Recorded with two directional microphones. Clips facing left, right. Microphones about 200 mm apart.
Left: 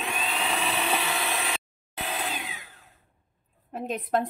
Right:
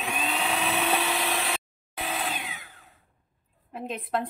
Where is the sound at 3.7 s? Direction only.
45° left (ahead or behind).